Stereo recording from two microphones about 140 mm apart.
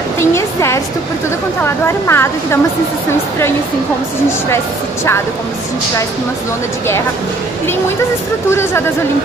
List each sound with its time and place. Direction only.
0.2 s a woman's voice: 20° left (ahead or behind)
8.5 s a woman's voice: 20° left (ahead or behind)